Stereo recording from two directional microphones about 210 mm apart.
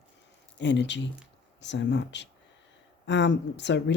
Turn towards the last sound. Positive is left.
turn(degrees=55)  # may be behind; listen again after turning